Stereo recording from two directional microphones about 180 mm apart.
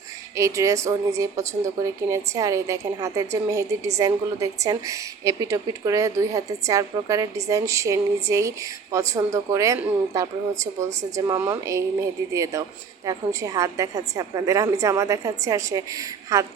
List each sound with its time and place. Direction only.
0.3 s a woman's voice: 15° right (ahead or behind)